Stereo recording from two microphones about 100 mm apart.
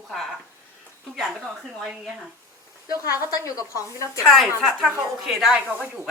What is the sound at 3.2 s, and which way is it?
Speech, 35° left (ahead or behind).